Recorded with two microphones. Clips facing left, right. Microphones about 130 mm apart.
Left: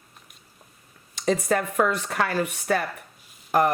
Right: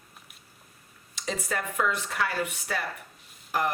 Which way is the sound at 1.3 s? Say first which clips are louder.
Left 9 dB; 45° left (ahead or behind).